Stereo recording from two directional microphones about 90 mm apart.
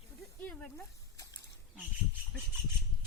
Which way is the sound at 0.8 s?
35° left (ahead or behind).